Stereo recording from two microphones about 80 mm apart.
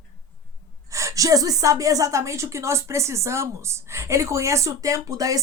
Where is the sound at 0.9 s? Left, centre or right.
Right.